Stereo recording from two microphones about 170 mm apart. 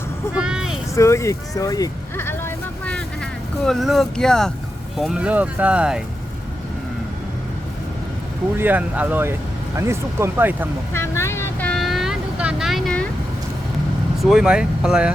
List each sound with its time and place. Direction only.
0.3 s vehicle: 5° right (ahead or behind)
0.9 s vehicle: 15° left (ahead or behind)
4.9 s speech: 5° right (ahead or behind)
8.5 s speech: 10° right (ahead or behind)
10.9 s speech: 15° left (ahead or behind)
11.7 s vehicle: centre (ahead or behind)
14.2 s speech: centre (ahead or behind)